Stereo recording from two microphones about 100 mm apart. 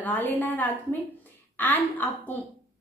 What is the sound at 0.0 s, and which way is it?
A woman's voice, 15° left (ahead or behind).